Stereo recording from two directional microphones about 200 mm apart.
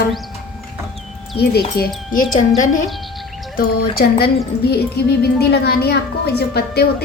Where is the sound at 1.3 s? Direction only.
50° left (ahead or behind).